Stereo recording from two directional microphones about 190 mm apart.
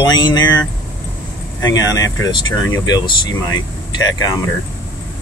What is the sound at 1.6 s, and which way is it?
Speech, 20° left (ahead or behind).